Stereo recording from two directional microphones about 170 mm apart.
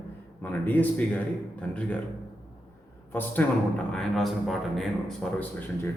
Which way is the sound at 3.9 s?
Centre (ahead or behind).